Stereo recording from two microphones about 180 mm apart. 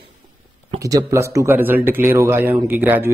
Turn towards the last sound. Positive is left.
turn(degrees=-10)  # may be behind; listen again after turning